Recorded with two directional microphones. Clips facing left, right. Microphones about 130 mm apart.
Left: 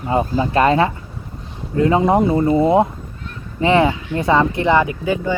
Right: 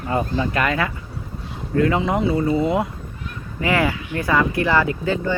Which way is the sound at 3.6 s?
25° left (ahead or behind).